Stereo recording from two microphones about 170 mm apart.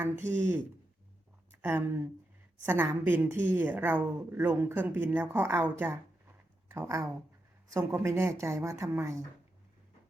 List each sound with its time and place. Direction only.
0.0 s speech: 15° right (ahead or behind)
1.6 s speech: 15° right (ahead or behind)